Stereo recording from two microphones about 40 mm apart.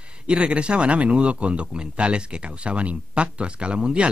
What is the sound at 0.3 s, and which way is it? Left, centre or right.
A man's voice, right.